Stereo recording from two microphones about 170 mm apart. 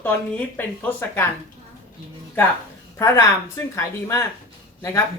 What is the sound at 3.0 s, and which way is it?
Speech, 15° left (ahead or behind).